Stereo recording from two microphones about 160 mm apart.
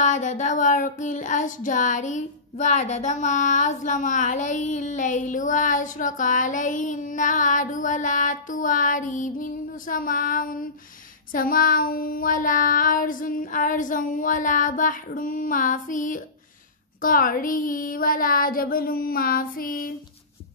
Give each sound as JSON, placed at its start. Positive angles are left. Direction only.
{"t": 0.0, "sound": "child singing", "side_deg": 50}